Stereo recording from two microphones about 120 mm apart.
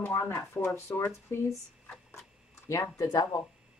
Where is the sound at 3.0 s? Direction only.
25° left (ahead or behind).